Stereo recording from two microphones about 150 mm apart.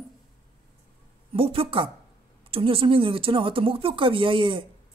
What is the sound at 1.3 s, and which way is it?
Speech, 40° right (ahead or behind).